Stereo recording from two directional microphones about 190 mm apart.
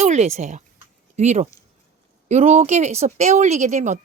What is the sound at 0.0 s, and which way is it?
Speech, 35° right (ahead or behind).